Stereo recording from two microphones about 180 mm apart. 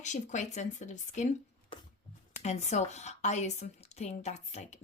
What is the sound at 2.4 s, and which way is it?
Speech, 40° left (ahead or behind).